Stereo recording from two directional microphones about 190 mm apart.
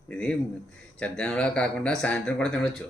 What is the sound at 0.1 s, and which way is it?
Speech, 5° left (ahead or behind).